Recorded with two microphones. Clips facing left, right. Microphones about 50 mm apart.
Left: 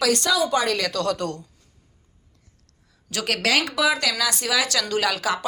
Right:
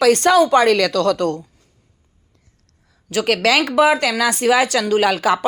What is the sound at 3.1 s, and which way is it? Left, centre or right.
Speech, right.